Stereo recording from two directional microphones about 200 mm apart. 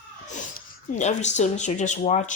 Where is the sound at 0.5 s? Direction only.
35° left (ahead or behind).